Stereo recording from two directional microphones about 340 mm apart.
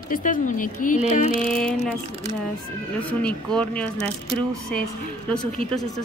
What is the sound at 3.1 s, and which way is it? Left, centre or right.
Speech, centre.